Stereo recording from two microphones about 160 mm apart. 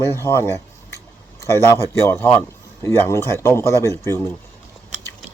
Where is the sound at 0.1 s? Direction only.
15° left (ahead or behind).